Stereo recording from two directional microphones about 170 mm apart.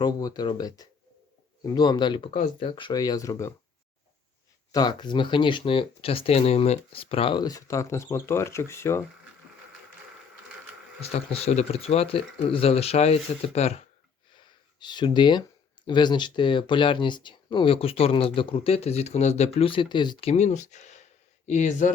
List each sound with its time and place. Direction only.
0.0 s speech: 25° left (ahead or behind)
2.3 s speech: 40° left (ahead or behind)
2.6 s speech: 30° left (ahead or behind)
4.7 s speech: 25° left (ahead or behind)
11.0 s speech: 35° left (ahead or behind)
14.3 s a sound: 25° left (ahead or behind)
15.9 s speech: 25° left (ahead or behind)
20.3 s speech: 45° left (ahead or behind)